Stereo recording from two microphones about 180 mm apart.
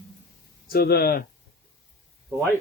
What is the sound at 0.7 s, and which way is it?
Speech, 60° left (ahead or behind).